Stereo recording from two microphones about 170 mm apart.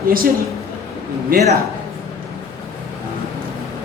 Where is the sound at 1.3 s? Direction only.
55° right (ahead or behind).